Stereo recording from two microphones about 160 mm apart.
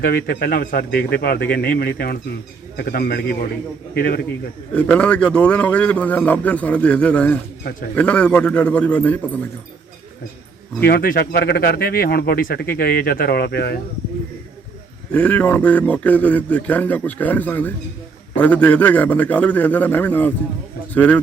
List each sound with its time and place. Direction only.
0.0 s speech: 70° left (ahead or behind)
4.7 s a man's voice: 5° left (ahead or behind)
10.8 s speech: 70° left (ahead or behind); by 13.7 s 90° left
15.1 s a man's voice: 10° left (ahead or behind)